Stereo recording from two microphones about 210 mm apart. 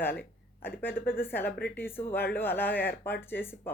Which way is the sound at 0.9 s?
45° left (ahead or behind).